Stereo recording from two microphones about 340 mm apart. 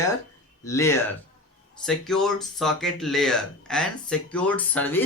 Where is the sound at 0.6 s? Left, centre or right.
Centre.